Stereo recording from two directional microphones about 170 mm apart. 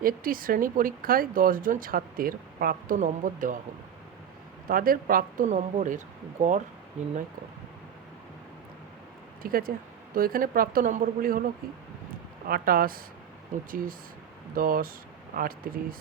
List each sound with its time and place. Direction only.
0.0 s speech: 55° right (ahead or behind)
4.7 s speech: 55° right (ahead or behind)
9.4 s speech: 60° right (ahead or behind)
12.5 s speech: 60° right (ahead or behind)